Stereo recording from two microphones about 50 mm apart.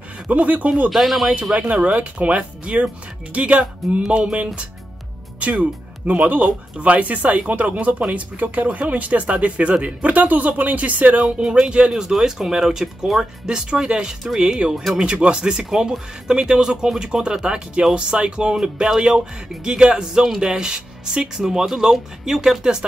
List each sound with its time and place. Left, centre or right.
0.3 s speech: right
0.8 s speech: centre
1.5 s speech: right
11.2 s speech: centre